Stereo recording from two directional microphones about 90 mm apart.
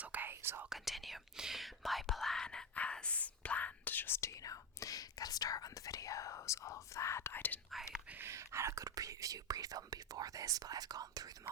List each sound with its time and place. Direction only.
0.0 s whispering: 20° right (ahead or behind)
0.7 s whispering: centre (ahead or behind); by 7.6 s 20° left (ahead or behind)
7.7 s whispering: centre (ahead or behind)
8.1 s whispering: 30° right (ahead or behind); by 11.3 s 45° right (ahead or behind)